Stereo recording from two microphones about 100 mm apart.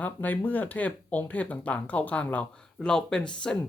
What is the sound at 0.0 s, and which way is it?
Speech, 15° left (ahead or behind).